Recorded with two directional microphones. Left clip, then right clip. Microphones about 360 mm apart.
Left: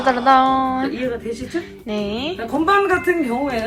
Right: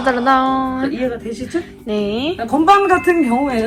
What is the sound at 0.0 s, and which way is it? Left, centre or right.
A woman's voice, centre.